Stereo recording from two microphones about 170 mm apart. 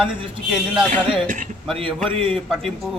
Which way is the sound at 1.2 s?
45° right (ahead or behind).